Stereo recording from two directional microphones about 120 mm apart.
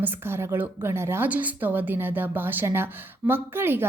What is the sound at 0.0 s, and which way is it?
A woman's voice, 20° right (ahead or behind).